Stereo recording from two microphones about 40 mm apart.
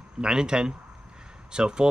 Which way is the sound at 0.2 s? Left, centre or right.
Right.